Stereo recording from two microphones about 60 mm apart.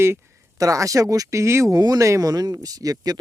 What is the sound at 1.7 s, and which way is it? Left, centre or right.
Speech, right.